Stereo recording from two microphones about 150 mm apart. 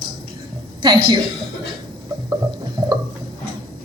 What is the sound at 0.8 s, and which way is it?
Speech, 30° right (ahead or behind).